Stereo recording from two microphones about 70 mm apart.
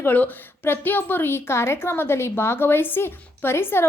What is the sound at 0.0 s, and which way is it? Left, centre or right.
A woman's voice, left.